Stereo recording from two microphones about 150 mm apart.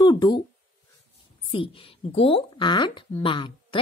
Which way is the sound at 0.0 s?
30° left (ahead or behind).